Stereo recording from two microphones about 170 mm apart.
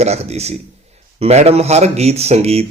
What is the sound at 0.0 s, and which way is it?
Speech, 40° right (ahead or behind).